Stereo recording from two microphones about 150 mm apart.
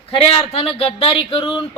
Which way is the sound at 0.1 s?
40° left (ahead or behind).